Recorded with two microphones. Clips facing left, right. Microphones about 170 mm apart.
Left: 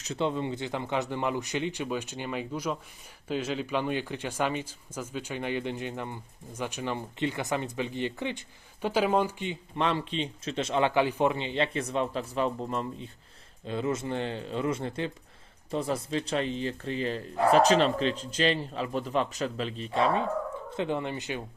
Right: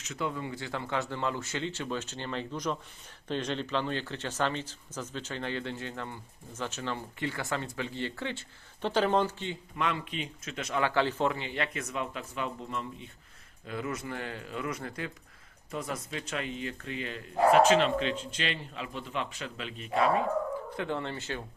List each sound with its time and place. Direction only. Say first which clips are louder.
0.0 s speech: left 5 dB; 30° left (ahead or behind); by 9.6 s 15° left (ahead or behind)
9.7 s a man's voice: left 5 dB; 30° left (ahead or behind)
13.7 s a man's voice: left 5 dB; 25° left (ahead or behind)